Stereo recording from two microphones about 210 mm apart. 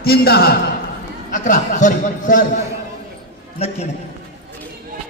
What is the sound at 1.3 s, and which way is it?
Speech, 35° left (ahead or behind).